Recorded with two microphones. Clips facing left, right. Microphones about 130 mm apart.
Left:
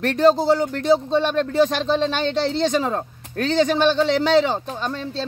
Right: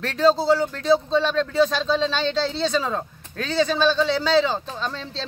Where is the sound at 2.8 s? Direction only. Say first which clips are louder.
Left 3 dB; 45° left (ahead or behind).